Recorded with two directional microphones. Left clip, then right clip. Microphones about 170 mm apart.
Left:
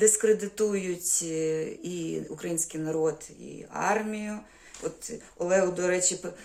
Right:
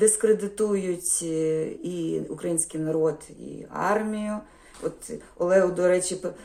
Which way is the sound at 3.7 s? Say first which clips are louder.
Right 2 dB; 15° left (ahead or behind).